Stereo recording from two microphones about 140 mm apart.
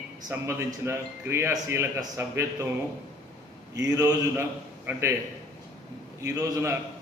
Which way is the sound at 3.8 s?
25° right (ahead or behind).